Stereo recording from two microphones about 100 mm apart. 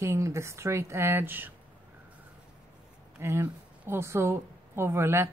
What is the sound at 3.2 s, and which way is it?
Speech, 25° right (ahead or behind).